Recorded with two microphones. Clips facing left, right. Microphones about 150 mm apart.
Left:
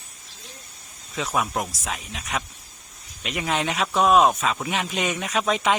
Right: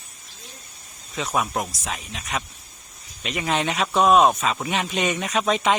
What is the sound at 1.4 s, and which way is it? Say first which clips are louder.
Speech: right 1 dB; centre (ahead or behind).